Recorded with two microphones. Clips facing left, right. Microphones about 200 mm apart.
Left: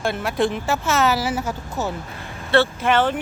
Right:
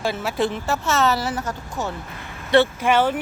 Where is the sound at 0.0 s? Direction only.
Centre (ahead or behind).